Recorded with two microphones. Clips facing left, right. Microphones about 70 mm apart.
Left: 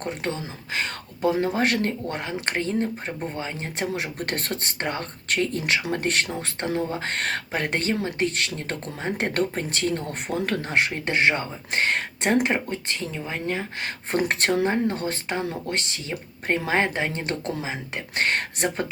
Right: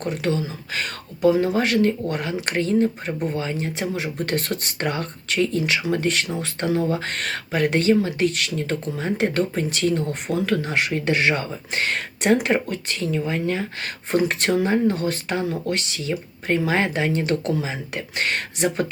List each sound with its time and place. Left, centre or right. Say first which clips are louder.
0.0 s speech: right 5 dB; left
2.0 s speech: right 3 dB; left
3.8 s speech: right 2 dB; left
4.4 s speech: right 3 dB; left
5.3 s speech: right 2 dB; left
14.2 s speech: right 2 dB; left